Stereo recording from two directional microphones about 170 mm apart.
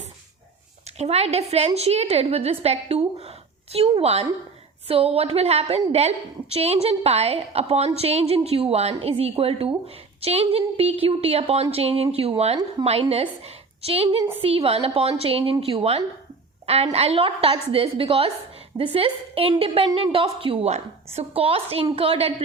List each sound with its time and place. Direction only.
0.9 s a woman's voice: 40° right (ahead or behind)